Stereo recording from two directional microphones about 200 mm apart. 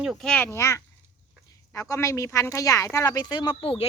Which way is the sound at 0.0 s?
Centre (ahead or behind).